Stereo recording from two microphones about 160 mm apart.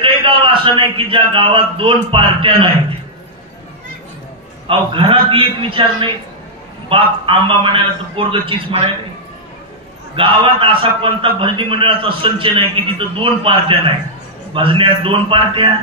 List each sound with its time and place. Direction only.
0.0 s a man's voice: 35° right (ahead or behind)
4.6 s a man's voice: 35° right (ahead or behind)
10.1 s a man's voice: 35° right (ahead or behind)